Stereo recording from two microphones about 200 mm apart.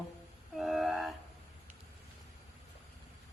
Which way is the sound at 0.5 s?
Centre (ahead or behind).